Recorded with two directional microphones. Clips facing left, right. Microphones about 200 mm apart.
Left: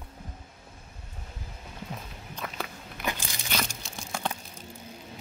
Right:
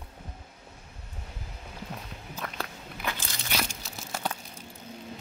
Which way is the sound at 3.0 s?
15° left (ahead or behind).